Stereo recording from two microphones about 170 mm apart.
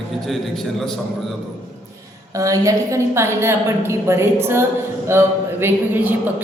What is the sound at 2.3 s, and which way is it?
A woman's voice, 20° right (ahead or behind).